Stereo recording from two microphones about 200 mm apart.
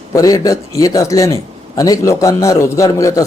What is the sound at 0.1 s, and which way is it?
A man's voice, 15° left (ahead or behind).